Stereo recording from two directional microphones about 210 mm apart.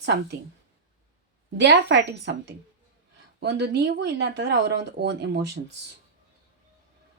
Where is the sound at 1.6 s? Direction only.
55° right (ahead or behind).